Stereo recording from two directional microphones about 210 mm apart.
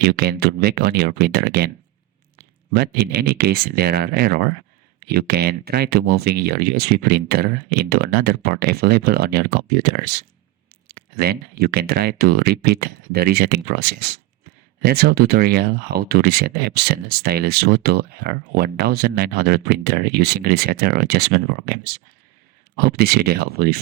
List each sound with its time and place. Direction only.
0.0 s speech: 50° right (ahead or behind)